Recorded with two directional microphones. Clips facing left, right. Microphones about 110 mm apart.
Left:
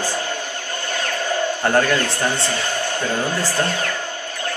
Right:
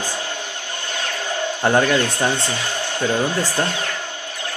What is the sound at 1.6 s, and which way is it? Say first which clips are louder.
Speech: right 3 dB; 10° right (ahead or behind).